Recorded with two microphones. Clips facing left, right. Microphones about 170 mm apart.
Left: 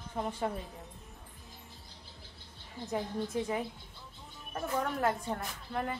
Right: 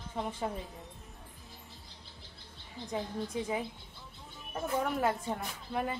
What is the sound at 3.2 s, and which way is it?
Speech, centre (ahead or behind).